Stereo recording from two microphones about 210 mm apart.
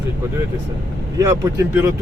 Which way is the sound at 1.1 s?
15° right (ahead or behind).